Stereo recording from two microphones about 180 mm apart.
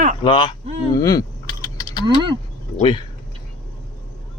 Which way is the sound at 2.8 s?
25° left (ahead or behind).